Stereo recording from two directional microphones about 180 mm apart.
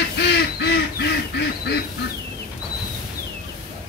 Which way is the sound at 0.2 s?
70° left (ahead or behind).